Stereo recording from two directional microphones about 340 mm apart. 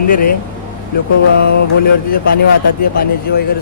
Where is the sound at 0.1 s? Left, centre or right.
Left.